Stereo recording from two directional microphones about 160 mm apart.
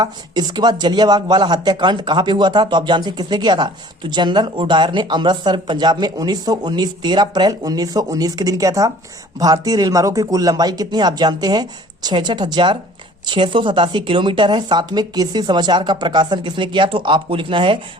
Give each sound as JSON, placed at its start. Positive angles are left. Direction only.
{"t": 0.0, "sound": "speech", "side_deg": -25}